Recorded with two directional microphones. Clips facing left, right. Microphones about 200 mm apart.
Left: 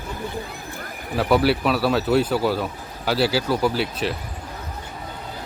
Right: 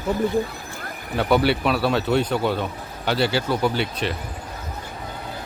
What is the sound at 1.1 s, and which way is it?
Speech, centre (ahead or behind).